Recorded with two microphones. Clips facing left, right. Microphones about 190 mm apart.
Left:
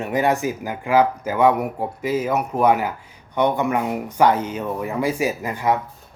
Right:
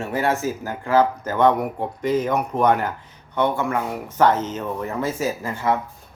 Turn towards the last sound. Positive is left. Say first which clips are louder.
# left 1 dB
turn(degrees=15)  # may be behind; listen again after turning